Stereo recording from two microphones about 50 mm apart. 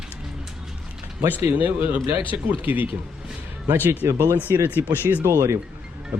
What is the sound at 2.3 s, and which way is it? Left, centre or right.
Speech, right.